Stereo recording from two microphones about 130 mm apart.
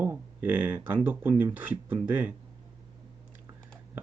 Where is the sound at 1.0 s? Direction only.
15° right (ahead or behind).